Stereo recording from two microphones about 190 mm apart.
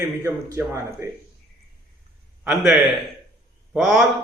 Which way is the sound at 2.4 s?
5° right (ahead or behind).